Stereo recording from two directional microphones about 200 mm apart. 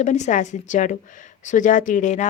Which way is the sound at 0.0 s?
35° left (ahead or behind).